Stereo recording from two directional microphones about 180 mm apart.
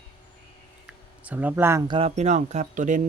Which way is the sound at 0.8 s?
10° right (ahead or behind).